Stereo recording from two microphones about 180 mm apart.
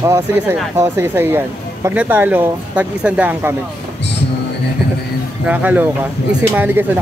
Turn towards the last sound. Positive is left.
turn(degrees=-10)  # may be behind; listen again after turning